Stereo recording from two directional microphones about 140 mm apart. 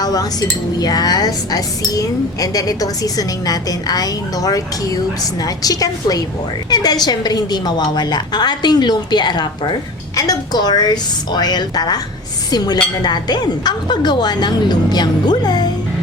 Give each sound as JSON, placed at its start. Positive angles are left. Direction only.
{"t": 0.0, "sound": "a woman's voice", "side_deg": 25}